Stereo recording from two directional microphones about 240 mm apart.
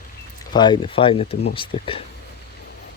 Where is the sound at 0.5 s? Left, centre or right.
Centre.